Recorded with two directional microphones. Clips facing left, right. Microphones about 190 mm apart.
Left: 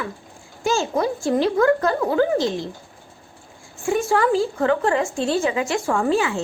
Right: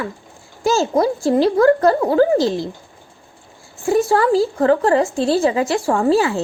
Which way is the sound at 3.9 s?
35° right (ahead or behind).